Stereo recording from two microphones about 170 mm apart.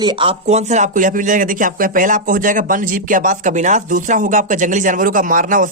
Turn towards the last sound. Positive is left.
turn(degrees=-50)  # may be behind; listen again after turning